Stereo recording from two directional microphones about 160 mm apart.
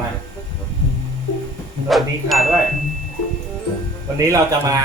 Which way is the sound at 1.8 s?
Centre (ahead or behind).